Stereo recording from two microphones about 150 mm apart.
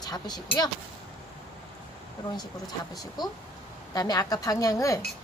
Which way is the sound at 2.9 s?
25° left (ahead or behind).